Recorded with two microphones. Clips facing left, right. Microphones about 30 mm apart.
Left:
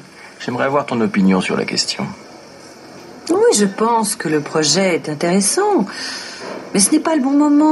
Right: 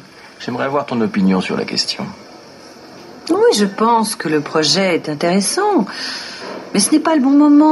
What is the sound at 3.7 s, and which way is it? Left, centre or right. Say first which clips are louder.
Speech: right 2 dB; centre.